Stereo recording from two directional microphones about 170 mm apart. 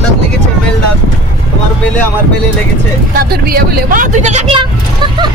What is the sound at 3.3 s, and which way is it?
Vehicle, 60° right (ahead or behind).